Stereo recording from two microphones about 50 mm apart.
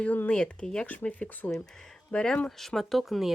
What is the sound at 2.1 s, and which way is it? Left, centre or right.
Speech, left.